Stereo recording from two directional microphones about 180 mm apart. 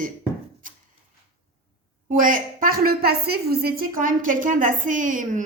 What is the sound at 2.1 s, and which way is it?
A woman's voice, 50° right (ahead or behind).